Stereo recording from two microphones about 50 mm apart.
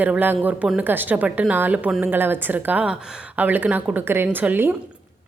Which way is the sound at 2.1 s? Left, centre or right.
Right.